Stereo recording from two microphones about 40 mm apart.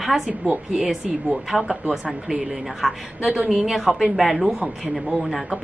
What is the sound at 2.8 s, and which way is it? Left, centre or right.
Speech, centre.